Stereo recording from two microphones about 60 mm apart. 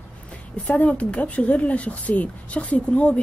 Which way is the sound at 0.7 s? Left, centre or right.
Left.